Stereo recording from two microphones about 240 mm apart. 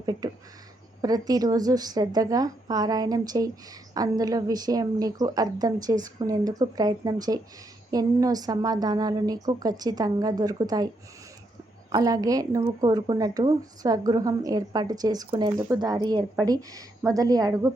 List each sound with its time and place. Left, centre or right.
0.0 s speech: centre
11.9 s speech: centre